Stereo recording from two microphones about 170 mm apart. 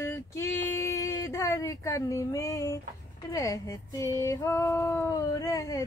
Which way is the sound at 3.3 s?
20° left (ahead or behind).